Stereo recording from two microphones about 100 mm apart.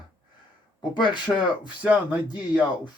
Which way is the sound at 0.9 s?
50° left (ahead or behind).